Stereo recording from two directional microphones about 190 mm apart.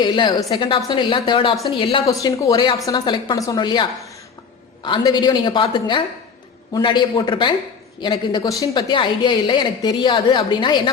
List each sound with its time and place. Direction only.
0.0 s a woman's voice: 25° left (ahead or behind)